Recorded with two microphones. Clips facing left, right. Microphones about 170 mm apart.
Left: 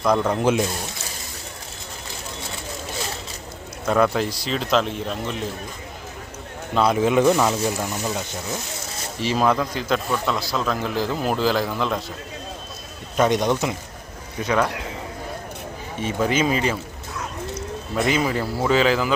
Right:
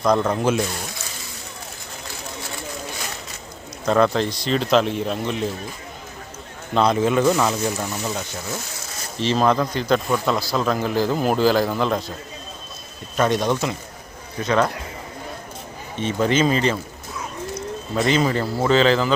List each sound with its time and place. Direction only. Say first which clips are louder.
0.0 s a man's voice: right 1 dB; 5° left (ahead or behind)
0.3 s speech: left 1 dB; 20° left (ahead or behind)
3.8 s a man's voice: right 2 dB; 5° left (ahead or behind)
6.7 s speech: even; 10° left (ahead or behind)
9.2 s a man's voice: right 2 dB; 5° left (ahead or behind)
13.1 s speech: left 1 dB; 15° left (ahead or behind)
16.0 s speech: right 2 dB; 10° left (ahead or behind)
17.2 s bird: right 1 dB; centre (ahead or behind)
18.6 s speech: right 2 dB; 10° left (ahead or behind)